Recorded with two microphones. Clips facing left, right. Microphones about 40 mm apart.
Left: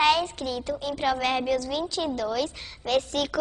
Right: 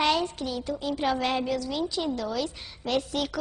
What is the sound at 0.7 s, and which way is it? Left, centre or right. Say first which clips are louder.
A child's voice: even; centre.